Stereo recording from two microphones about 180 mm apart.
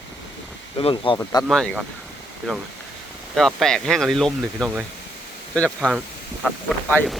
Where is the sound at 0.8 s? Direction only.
30° left (ahead or behind).